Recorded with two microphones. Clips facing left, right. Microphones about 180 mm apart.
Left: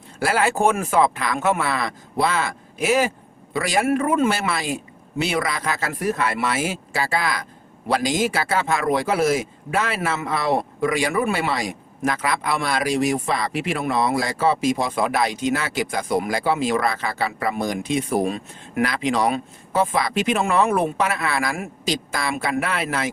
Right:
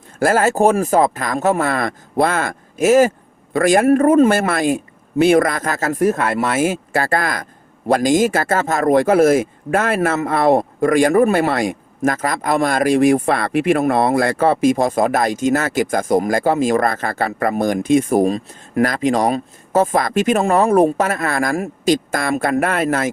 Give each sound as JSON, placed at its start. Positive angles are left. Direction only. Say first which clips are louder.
{"t": 0.2, "sound": "speech", "louder": "right 5 dB", "side_deg": -45}